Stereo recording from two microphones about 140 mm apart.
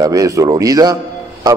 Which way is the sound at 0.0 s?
25° right (ahead or behind).